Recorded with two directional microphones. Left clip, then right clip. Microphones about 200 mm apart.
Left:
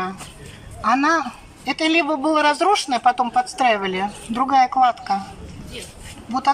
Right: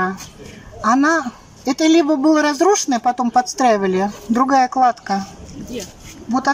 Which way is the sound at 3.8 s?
20° right (ahead or behind).